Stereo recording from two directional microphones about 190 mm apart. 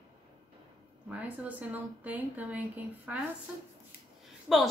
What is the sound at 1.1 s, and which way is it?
A woman's voice, 5° right (ahead or behind).